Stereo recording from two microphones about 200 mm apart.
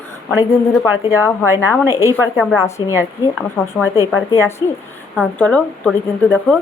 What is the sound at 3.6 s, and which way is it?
Speech, centre (ahead or behind).